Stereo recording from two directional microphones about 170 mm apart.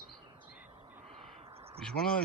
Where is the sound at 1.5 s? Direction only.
35° right (ahead or behind).